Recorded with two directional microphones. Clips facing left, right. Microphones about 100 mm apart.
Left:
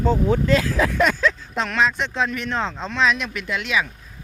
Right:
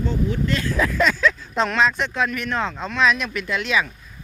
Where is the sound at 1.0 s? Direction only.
50° left (ahead or behind).